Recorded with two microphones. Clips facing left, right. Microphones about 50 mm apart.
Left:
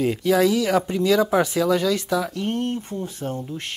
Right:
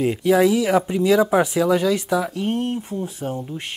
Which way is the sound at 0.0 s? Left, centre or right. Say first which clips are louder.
Right 2 dB; centre.